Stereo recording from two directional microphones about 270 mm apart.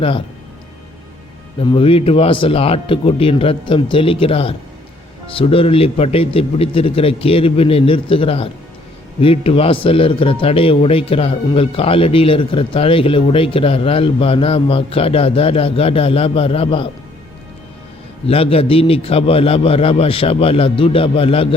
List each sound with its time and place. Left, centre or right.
1.5 s speech: centre
18.3 s speech: left